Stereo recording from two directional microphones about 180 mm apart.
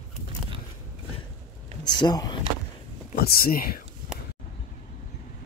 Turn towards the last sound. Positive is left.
turn(degrees=55)  # may be behind; listen again after turning